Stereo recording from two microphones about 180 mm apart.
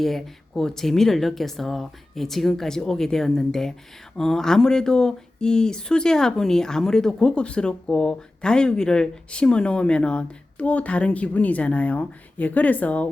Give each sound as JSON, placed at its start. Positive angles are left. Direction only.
{"t": 0.0, "sound": "speech", "side_deg": 0}